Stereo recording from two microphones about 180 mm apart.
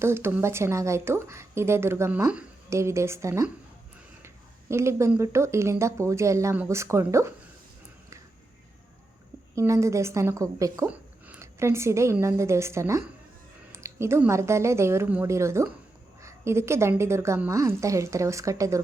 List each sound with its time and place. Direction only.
0.0 s speech: 15° right (ahead or behind)
4.7 s speech: 15° right (ahead or behind)
9.6 s a woman's voice: 15° right (ahead or behind)